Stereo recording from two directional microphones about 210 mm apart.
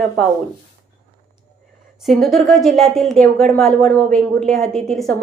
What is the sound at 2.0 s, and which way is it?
Speech, centre (ahead or behind).